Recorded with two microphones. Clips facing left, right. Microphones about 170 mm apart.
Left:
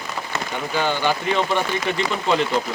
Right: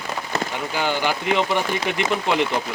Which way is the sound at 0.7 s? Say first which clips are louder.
Left 2 dB; 15° right (ahead or behind).